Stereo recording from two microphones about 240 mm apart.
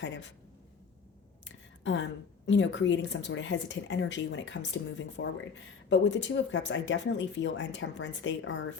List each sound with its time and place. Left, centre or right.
0.0 s speech: left
1.5 s a sound: left
2.5 s speech: left